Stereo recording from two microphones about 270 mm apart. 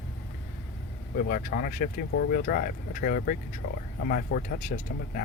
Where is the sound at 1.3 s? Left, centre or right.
Left.